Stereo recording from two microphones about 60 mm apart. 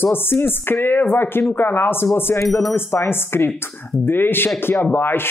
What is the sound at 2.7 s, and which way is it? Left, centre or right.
Speech, left.